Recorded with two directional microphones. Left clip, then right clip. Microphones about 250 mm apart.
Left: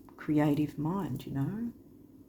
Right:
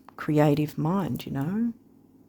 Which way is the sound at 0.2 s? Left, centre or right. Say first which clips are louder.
Right 6 dB; right.